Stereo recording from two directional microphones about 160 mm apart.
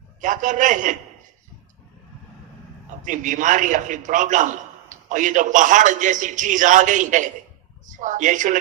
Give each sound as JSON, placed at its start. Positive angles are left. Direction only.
{"t": 0.2, "sound": "a man's voice", "side_deg": -50}
{"t": 3.0, "sound": "a man's voice", "side_deg": -55}